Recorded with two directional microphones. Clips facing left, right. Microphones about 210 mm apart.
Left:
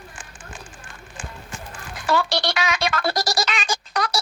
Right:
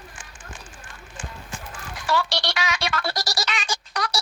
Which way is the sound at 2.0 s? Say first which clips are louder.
Left 3 dB; 55° left (ahead or behind).